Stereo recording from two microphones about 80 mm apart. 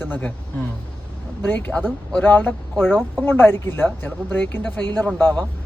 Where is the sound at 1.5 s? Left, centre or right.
Left.